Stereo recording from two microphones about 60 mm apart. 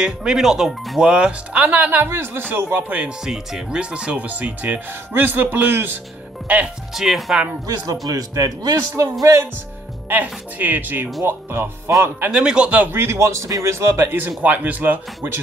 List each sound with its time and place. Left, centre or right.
0.0 s speech: centre
2.0 s speech: right
3.3 s speech: centre; by 5.9 s right
6.4 s speech: right
7.0 s speech: centre
7.6 s a man's voice: right
10.2 s speech: right
12.4 s speech: centre
12.9 s a man's voice: right
14.0 s speech: right